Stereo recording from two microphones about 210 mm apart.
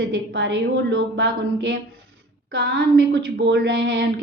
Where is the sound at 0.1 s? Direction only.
55° right (ahead or behind).